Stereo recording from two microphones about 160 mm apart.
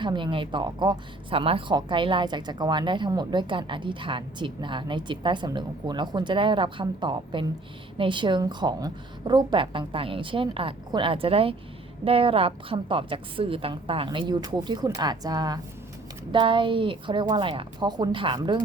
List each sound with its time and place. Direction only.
0.0 s a woman's voice: 30° right (ahead or behind)